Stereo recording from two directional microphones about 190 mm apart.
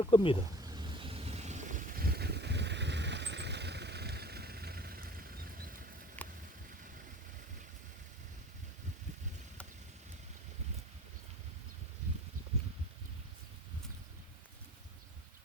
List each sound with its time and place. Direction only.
0.0 s speech: 25° left (ahead or behind)
0.6 s vehicle: 20° right (ahead or behind); by 5.2 s 50° right (ahead or behind)
6.2 s a sound: 10° left (ahead or behind)